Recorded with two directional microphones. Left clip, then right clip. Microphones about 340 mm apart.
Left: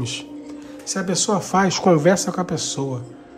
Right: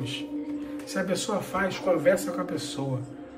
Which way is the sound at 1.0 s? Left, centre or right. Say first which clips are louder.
Left 6 dB; centre.